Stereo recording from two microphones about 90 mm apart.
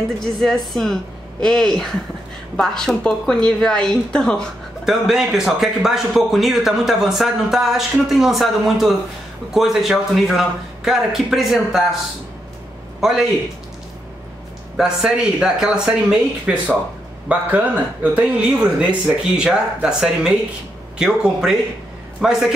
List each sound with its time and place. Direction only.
0.4 s a woman's voice: 5° left (ahead or behind)
4.8 s speech: 5° right (ahead or behind)
13.0 s speech: 5° right (ahead or behind)
14.8 s speech: 5° right (ahead or behind)